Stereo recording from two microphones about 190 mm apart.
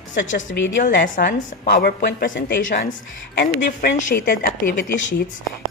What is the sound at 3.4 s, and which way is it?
Speech, 50° left (ahead or behind).